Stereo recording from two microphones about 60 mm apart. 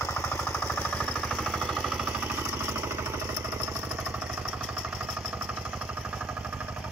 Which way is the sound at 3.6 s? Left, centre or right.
Right.